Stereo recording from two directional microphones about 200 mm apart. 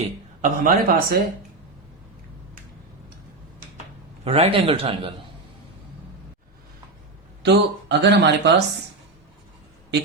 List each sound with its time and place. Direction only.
0.0 s speech: 40° right (ahead or behind)
4.2 s a man's voice: 30° right (ahead or behind)
7.4 s speech: 60° right (ahead or behind)